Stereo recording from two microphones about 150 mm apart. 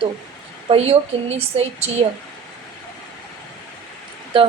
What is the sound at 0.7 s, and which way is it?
A woman's voice, 40° right (ahead or behind).